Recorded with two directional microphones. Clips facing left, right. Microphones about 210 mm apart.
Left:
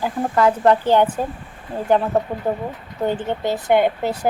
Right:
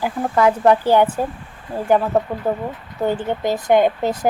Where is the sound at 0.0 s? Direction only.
10° right (ahead or behind).